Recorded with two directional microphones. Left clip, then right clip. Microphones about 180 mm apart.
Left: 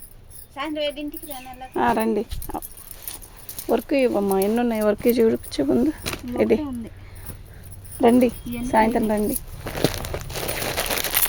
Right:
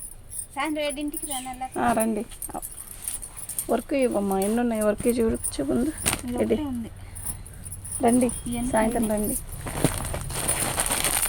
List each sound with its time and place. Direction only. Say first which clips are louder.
0.5 s speech: left 1 dB; 25° left (ahead or behind)
1.7 s speech: left 4 dB; 65° left (ahead or behind)
3.7 s speech: left 4 dB; 55° left (ahead or behind)
8.0 s speech: left 5 dB; 60° left (ahead or behind)
8.6 s a sound: left 5 dB; 55° left (ahead or behind)